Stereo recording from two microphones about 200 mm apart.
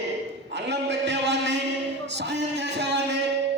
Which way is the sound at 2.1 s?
60° right (ahead or behind).